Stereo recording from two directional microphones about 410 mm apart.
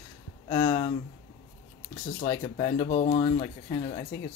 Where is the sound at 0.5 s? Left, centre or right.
Centre.